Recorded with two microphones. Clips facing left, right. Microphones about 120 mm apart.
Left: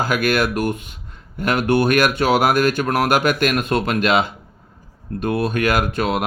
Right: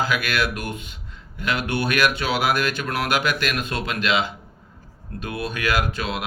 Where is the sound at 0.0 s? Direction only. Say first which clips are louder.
Left 5 dB; 45° left (ahead or behind).